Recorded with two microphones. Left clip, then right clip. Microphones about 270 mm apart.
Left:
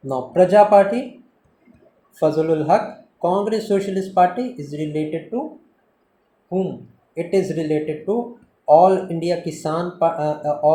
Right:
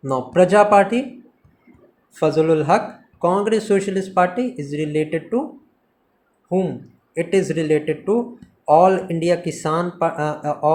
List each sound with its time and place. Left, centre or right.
0.0 s speech: right
2.1 s speech: right
7.1 s speech: right